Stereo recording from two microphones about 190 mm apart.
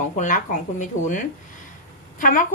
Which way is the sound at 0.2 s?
40° left (ahead or behind).